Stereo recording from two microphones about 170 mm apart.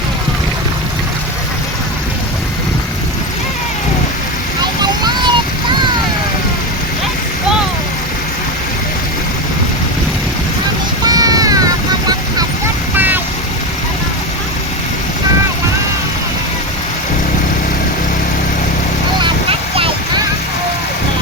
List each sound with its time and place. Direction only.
4.8 s vehicle: 25° right (ahead or behind)
11.0 s vehicle: 20° right (ahead or behind)
19.2 s a sound: 35° right (ahead or behind)